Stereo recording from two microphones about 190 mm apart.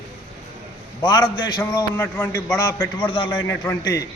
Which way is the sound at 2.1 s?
10° left (ahead or behind).